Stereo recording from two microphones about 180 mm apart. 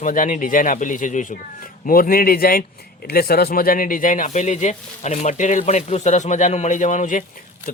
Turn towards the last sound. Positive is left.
turn(degrees=45)  # may be behind; listen again after turning